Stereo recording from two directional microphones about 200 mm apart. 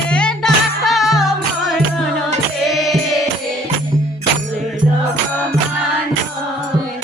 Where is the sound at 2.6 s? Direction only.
Centre (ahead or behind).